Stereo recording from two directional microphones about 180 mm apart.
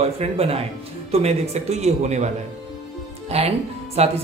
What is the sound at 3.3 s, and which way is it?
Speech, 35° right (ahead or behind).